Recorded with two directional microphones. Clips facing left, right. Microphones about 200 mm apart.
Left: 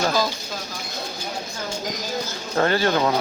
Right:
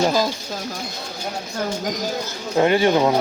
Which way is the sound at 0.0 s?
15° right (ahead or behind).